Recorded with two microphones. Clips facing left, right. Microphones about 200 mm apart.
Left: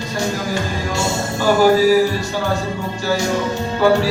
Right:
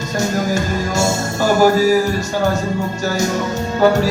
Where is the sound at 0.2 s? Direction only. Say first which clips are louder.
Right 3 dB; 45° right (ahead or behind).